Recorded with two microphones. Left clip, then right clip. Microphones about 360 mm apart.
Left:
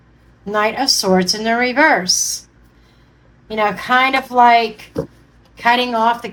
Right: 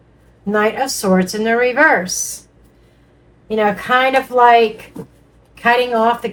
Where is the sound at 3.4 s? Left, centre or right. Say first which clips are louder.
Right 1 dB; left.